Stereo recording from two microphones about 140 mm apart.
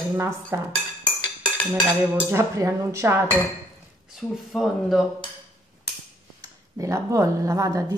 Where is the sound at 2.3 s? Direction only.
20° right (ahead or behind).